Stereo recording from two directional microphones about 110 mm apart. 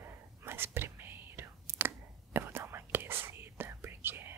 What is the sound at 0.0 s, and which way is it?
Whispering, 20° right (ahead or behind).